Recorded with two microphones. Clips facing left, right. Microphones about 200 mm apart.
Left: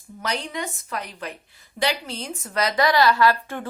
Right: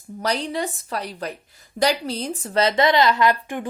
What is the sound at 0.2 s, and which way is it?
A woman's voice, 35° right (ahead or behind).